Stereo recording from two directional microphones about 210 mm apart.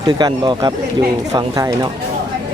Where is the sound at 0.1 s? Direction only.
20° right (ahead or behind).